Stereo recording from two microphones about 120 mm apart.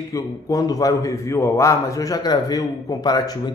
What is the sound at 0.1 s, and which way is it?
A man's voice, 30° left (ahead or behind).